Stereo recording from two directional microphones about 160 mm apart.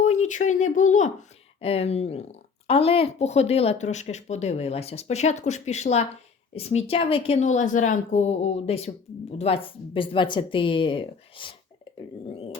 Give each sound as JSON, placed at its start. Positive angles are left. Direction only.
{"t": 0.0, "sound": "speech", "side_deg": 50}
{"t": 1.6, "sound": "a woman's voice", "side_deg": 40}